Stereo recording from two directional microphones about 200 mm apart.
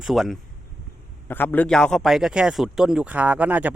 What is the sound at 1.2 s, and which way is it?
A man's voice, 10° left (ahead or behind).